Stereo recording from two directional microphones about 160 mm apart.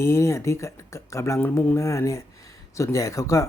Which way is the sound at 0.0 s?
15° left (ahead or behind).